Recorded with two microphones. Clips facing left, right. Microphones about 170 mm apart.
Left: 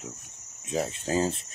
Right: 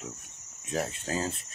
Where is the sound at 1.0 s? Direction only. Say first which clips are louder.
Left 6 dB; 30° left (ahead or behind).